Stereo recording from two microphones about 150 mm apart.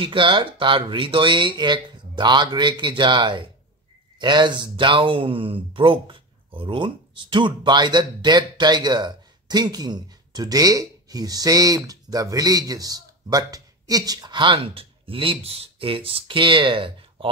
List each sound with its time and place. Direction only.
0.0 s speech: 35° right (ahead or behind)